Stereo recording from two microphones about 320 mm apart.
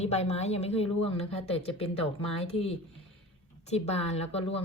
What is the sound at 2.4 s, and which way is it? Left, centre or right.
A woman's voice, centre.